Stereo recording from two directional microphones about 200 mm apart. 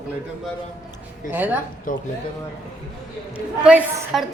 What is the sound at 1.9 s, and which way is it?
Speech, 45° left (ahead or behind).